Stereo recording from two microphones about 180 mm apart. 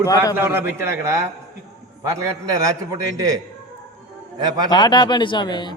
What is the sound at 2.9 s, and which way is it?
Speech, 20° right (ahead or behind).